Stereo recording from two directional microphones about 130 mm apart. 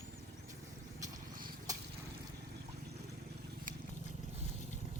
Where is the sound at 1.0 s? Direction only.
90° right.